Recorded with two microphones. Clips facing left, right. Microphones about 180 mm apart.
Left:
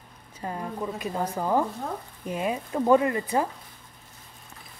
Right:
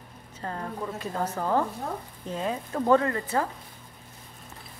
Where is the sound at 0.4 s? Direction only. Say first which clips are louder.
Left 2 dB; 15° left (ahead or behind).